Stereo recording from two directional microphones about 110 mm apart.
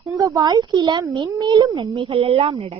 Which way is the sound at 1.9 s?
55° right (ahead or behind).